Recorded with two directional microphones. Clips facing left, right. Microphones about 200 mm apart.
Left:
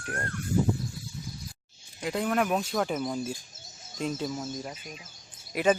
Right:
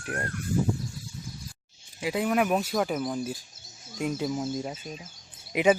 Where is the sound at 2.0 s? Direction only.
5° right (ahead or behind).